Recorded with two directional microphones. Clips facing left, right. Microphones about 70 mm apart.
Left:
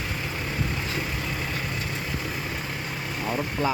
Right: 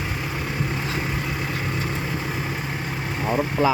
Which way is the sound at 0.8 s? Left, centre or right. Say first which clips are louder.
Right 3 dB; right.